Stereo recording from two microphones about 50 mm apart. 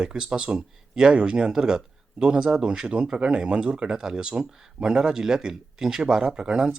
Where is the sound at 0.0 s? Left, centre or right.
Centre.